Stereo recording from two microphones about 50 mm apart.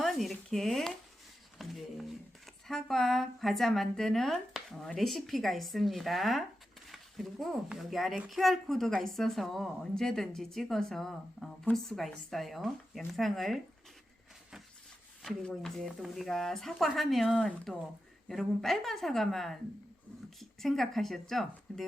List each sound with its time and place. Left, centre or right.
0.0 s a sound: centre
2.6 s a woman's voice: centre
6.8 s a sound: centre
7.8 s a woman's voice: centre
15.2 s speech: centre
16.0 s a woman's voice: centre